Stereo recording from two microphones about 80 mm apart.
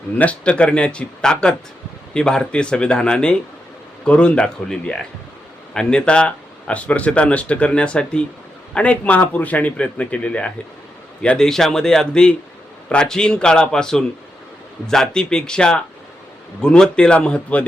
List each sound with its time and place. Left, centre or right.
0.2 s speech: centre